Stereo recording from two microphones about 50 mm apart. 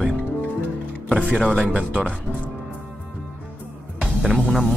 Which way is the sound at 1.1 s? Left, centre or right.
Right.